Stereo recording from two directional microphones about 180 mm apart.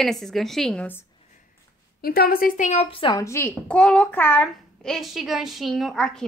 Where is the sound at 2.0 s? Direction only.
55° left (ahead or behind); by 3.2 s 30° left (ahead or behind).